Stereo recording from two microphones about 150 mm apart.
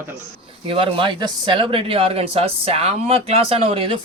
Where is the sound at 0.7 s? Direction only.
35° right (ahead or behind).